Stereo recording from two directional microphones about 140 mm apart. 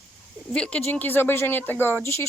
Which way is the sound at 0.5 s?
5° left (ahead or behind).